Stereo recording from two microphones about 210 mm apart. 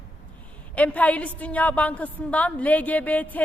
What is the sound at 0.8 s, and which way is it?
A woman's voice, 5° left (ahead or behind).